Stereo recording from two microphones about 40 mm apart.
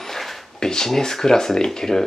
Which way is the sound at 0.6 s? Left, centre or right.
Centre.